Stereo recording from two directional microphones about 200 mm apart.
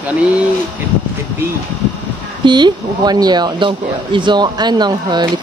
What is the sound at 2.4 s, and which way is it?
Speech, 20° right (ahead or behind).